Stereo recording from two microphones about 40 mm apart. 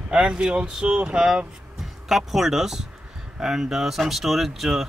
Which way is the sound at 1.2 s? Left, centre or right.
Right.